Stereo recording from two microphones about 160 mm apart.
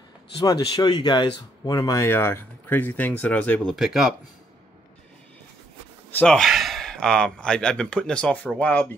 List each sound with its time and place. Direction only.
0.4 s speech: 25° left (ahead or behind); by 3.7 s 10° left (ahead or behind)
3.7 s speech: centre (ahead or behind)
6.1 s speech: 5° left (ahead or behind)